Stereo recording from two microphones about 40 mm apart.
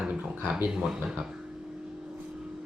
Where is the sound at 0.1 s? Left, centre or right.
Right.